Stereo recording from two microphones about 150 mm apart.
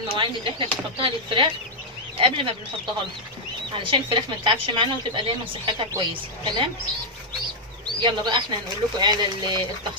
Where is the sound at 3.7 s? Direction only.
35° right (ahead or behind).